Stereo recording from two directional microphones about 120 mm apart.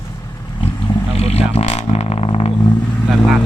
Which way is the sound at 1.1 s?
60° left (ahead or behind).